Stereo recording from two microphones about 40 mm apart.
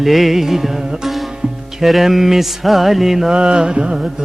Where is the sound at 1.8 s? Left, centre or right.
Centre.